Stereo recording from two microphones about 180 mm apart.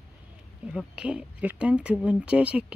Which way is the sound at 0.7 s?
5° right (ahead or behind).